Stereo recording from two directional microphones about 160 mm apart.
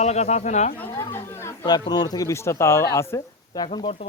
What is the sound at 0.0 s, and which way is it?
Speech, 45° left (ahead or behind).